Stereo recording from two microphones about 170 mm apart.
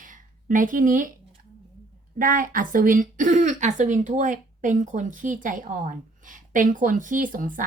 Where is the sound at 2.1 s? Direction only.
55° right (ahead or behind).